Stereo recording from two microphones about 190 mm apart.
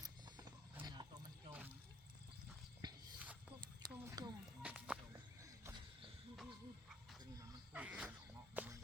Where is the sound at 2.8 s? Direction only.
20° right (ahead or behind).